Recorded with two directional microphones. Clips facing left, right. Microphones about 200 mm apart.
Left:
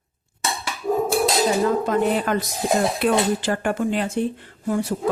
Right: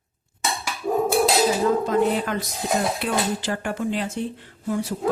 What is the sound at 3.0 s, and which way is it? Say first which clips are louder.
Speech: left 5 dB; 60° left (ahead or behind).